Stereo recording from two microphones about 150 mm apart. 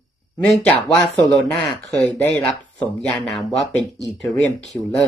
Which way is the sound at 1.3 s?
20° left (ahead or behind).